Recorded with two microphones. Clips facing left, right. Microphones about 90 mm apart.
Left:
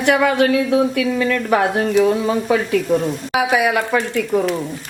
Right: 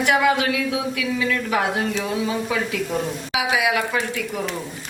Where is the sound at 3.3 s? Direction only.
45° left (ahead or behind).